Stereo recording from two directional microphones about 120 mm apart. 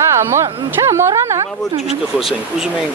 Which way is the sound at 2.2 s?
5° right (ahead or behind).